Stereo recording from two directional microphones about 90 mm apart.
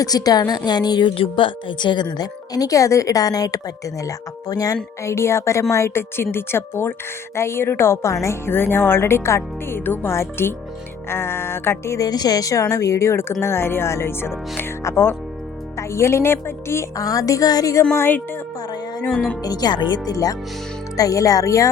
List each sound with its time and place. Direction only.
0.0 s speech: 45° left (ahead or behind)
1.1 s a woman's voice: 75° left (ahead or behind); by 11.9 s 25° left (ahead or behind)
11.9 s a woman's voice: 50° left (ahead or behind)
17.9 s a woman's voice: 25° left (ahead or behind)
19.0 s speech: 10° left (ahead or behind)
19.4 s a woman's voice: 45° left (ahead or behind)